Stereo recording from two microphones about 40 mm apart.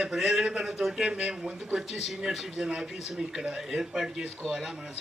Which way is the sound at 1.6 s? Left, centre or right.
Centre.